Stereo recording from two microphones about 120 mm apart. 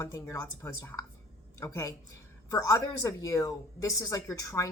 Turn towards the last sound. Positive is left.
turn(degrees=30)  # may be behind; listen again after turning